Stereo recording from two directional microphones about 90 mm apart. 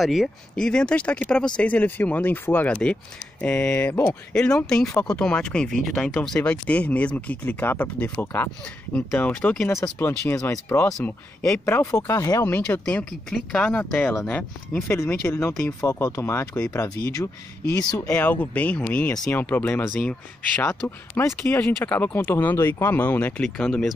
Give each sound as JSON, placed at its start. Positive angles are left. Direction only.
{"t": 0.0, "sound": "speech", "side_deg": 0}
{"t": 9.8, "sound": "speech", "side_deg": 25}
{"t": 13.3, "sound": "speech", "side_deg": 5}
{"t": 14.8, "sound": "speech", "side_deg": 30}
{"t": 18.0, "sound": "speech", "side_deg": 15}
{"t": 20.0, "sound": "speech", "side_deg": 10}
{"t": 21.1, "sound": "speech", "side_deg": 30}
{"t": 23.4, "sound": "speech", "side_deg": 10}